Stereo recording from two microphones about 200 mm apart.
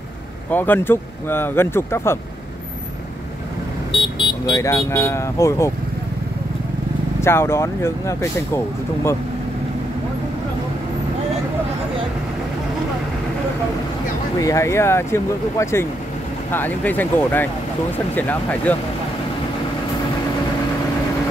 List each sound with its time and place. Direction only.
0.5 s speech: 10° left (ahead or behind)
3.9 s speech: 25° left (ahead or behind)
7.2 s speech: 15° left (ahead or behind)
14.4 s speech: 15° left (ahead or behind)